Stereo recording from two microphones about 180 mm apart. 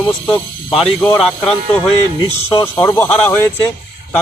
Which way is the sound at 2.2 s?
15° left (ahead or behind).